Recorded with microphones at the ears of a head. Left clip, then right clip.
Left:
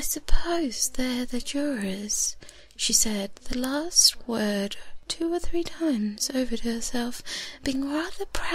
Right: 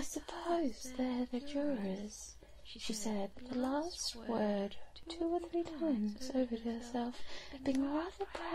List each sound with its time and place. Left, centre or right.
0.0 s speech: left